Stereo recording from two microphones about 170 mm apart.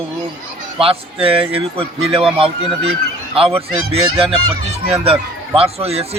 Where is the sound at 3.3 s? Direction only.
35° right (ahead or behind).